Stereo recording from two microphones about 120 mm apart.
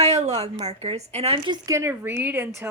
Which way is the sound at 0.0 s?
65° right (ahead or behind).